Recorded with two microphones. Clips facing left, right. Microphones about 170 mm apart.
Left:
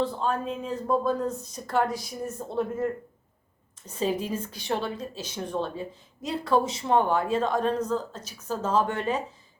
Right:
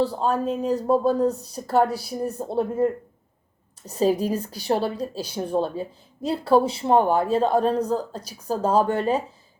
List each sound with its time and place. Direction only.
0.0 s speech: 35° right (ahead or behind)